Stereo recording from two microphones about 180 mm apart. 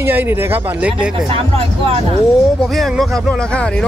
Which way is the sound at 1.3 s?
30° right (ahead or behind).